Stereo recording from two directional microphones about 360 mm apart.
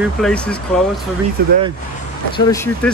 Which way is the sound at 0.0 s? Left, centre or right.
Centre.